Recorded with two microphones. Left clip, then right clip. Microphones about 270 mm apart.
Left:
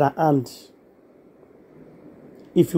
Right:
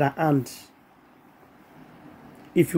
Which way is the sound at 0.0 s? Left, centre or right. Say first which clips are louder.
Left 4 dB; centre.